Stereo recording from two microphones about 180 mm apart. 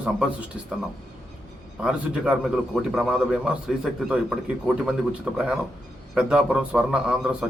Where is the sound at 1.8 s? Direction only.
5° right (ahead or behind).